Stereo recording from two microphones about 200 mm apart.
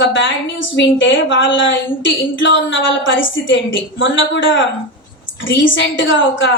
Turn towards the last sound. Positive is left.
turn(degrees=70)  # may be behind; listen again after turning